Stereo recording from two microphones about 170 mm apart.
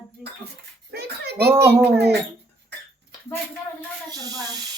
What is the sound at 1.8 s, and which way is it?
Speech, 75° right (ahead or behind).